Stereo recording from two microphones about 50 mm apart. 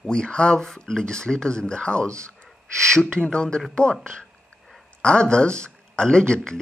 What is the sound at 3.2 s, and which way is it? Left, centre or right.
Speech, centre.